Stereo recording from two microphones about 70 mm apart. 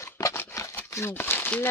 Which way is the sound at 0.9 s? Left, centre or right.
Left.